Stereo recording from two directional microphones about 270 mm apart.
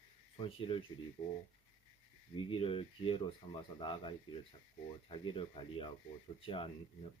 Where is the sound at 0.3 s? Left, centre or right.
Centre.